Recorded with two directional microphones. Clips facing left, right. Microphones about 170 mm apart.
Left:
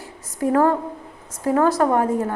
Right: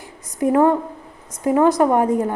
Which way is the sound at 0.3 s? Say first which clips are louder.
Right 2 dB; 20° right (ahead or behind).